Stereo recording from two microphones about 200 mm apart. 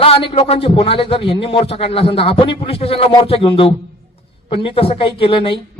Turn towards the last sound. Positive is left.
turn(degrees=25)  # may be behind; listen again after turning